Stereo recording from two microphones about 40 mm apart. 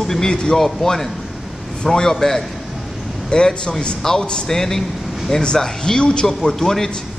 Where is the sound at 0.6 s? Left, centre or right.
Centre.